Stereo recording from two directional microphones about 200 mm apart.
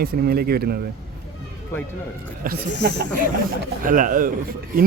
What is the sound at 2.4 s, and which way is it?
A man's voice, 45° right (ahead or behind).